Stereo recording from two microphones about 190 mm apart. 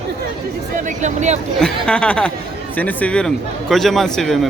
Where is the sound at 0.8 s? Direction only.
40° right (ahead or behind).